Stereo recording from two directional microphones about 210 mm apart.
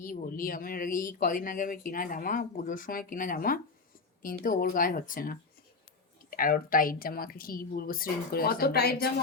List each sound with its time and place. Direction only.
0.0 s a woman's voice: 40° left (ahead or behind)